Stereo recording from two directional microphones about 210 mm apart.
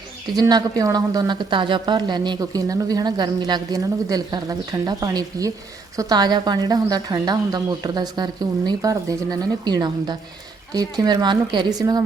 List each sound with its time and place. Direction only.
0.3 s a woman's voice: 20° right (ahead or behind)